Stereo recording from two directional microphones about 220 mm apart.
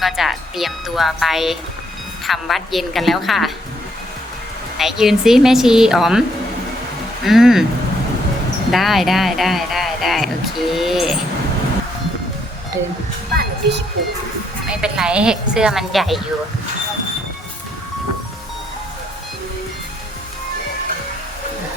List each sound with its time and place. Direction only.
0.0 s a woman's voice: centre (ahead or behind)
4.8 s speech: centre (ahead or behind)
7.3 s speech: centre (ahead or behind)
8.7 s speech: centre (ahead or behind)
13.3 s music: 45° right (ahead or behind)
14.7 s speech: 5° right (ahead or behind)